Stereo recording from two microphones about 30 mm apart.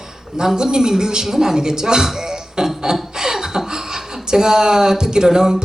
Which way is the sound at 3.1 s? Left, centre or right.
Centre.